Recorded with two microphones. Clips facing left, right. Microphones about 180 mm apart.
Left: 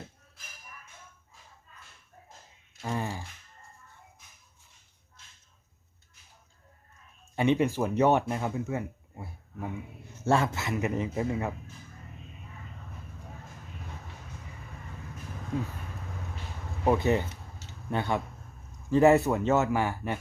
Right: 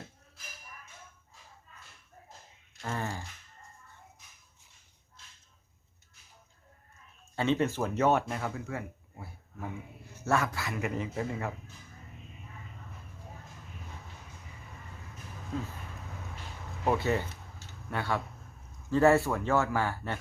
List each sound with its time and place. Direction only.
2.8 s speech: 15° left (ahead or behind)
7.3 s a man's voice: 15° left (ahead or behind)
16.8 s a sound: 20° left (ahead or behind)
18.9 s a man's voice: 15° left (ahead or behind)